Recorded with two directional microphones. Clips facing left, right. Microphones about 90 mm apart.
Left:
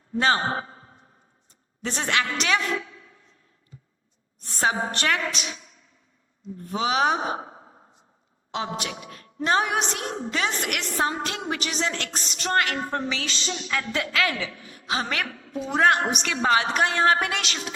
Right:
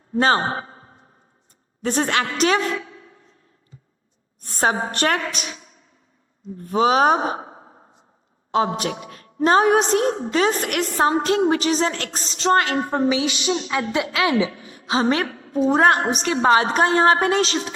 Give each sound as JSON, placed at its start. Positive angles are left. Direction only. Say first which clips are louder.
{"t": 0.1, "sound": "a man's voice", "louder": "right 4 dB", "side_deg": -40}
{"t": 4.4, "sound": "a woman's voice", "louder": "right 3 dB", "side_deg": -45}
{"t": 6.6, "sound": "a woman's voice", "louder": "right 7 dB", "side_deg": -45}
{"t": 13.1, "sound": "a woman's voice", "louder": "right 10 dB", "side_deg": -15}